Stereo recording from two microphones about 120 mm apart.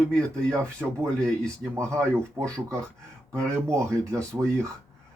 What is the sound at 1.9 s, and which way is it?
Speech, 25° right (ahead or behind).